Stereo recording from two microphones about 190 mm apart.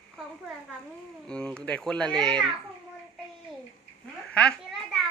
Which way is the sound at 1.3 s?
5° left (ahead or behind).